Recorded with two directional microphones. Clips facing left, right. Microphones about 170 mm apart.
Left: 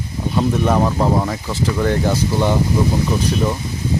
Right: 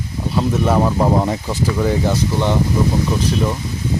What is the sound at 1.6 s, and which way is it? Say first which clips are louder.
Speech: even; 5° right (ahead or behind).